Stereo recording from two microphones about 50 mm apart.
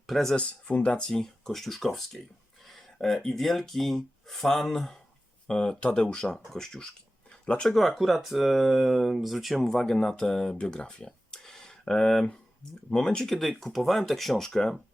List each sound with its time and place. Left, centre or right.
0.1 s speech: centre
0.3 s speech: left; by 2.0 s centre
2.6 s a sound: centre
3.2 s speech: centre
7.7 s speech: centre